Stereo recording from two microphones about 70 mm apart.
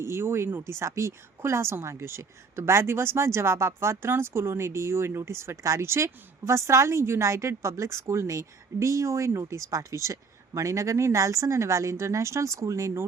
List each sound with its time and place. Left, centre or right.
0.0 s speech: right